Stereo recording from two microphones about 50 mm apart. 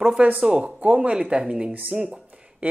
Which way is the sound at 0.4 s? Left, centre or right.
Centre.